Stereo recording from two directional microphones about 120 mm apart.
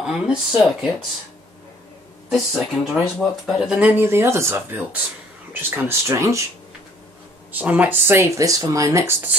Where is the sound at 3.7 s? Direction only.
10° right (ahead or behind).